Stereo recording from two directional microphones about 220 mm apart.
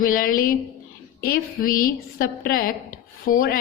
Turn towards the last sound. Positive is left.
turn(degrees=40)  # may be behind; listen again after turning